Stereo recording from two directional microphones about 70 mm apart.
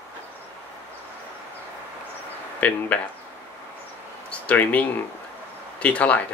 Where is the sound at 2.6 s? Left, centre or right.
Centre.